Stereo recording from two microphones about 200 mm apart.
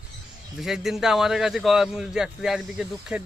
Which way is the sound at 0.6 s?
Centre (ahead or behind).